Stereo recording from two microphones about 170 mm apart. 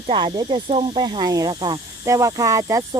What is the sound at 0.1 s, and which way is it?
Speech, 30° right (ahead or behind).